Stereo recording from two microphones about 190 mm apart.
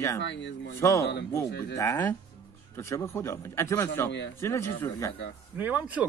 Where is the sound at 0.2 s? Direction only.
65° left (ahead or behind).